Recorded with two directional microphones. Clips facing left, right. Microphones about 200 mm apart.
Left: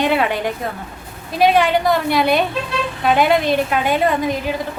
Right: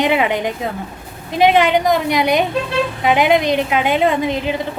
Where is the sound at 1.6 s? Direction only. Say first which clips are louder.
Right 1 dB; 20° right (ahead or behind).